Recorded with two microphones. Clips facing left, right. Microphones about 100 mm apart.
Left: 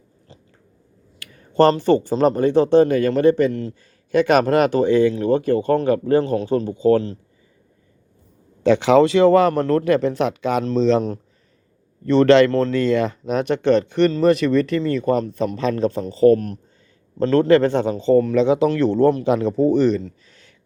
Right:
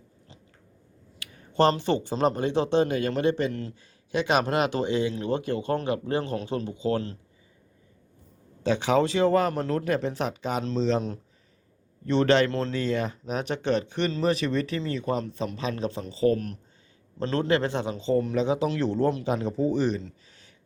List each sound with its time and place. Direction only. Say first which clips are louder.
1.2 s speech: left 7 dB; 45° left (ahead or behind)
8.6 s a man's voice: left 9 dB; 85° left
12.0 s a man's voice: left 9 dB; 65° left (ahead or behind)
12.5 s speech: left 9 dB; 50° left (ahead or behind)
12.7 s a man's voice: left 9 dB; 80° left; by 18.3 s 55° left (ahead or behind)
18.3 s speech: left 9 dB; 70° left (ahead or behind)